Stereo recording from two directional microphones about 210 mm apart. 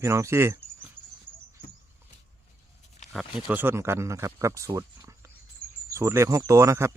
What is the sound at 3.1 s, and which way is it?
Speech, centre (ahead or behind).